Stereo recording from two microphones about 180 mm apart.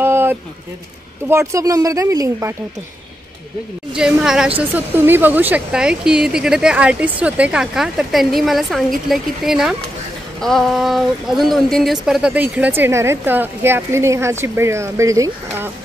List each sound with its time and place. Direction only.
0.0 s a sound: 10° right (ahead or behind)
1.3 s speech: 15° right (ahead or behind)
3.9 s speech: 5° right (ahead or behind)